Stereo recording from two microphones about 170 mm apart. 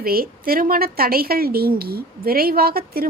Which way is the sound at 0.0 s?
60° right (ahead or behind).